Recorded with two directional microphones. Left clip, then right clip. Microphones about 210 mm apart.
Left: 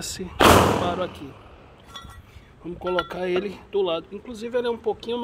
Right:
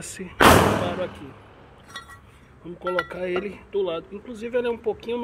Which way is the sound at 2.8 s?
20° left (ahead or behind).